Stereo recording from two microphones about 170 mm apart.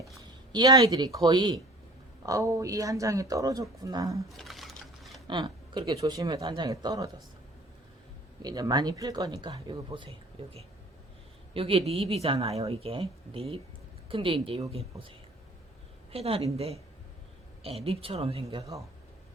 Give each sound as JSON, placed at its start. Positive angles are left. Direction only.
{"t": 0.5, "sound": "speech", "side_deg": -25}
{"t": 4.3, "sound": "a sound", "side_deg": 0}
{"t": 5.3, "sound": "speech", "side_deg": -25}
{"t": 8.4, "sound": "speech", "side_deg": -20}
{"t": 16.1, "sound": "speech", "side_deg": -35}